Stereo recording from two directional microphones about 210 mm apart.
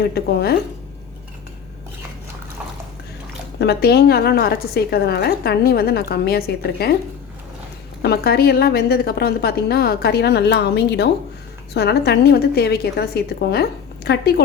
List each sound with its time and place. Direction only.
0.1 s a woman's voice: 50° left (ahead or behind)
3.6 s a woman's voice: 50° left (ahead or behind)
8.0 s a woman's voice: 50° left (ahead or behind)